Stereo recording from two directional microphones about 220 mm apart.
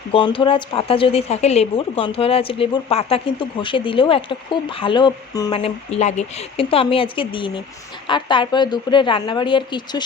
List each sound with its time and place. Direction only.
0.1 s a woman's voice: 25° left (ahead or behind)